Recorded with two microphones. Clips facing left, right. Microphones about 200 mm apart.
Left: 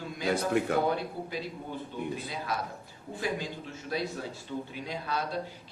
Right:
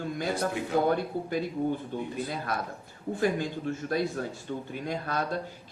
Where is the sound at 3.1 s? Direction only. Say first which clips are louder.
Right 5 dB; 50° right (ahead or behind).